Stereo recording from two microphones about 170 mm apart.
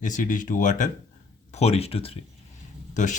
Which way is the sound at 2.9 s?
45° left (ahead or behind).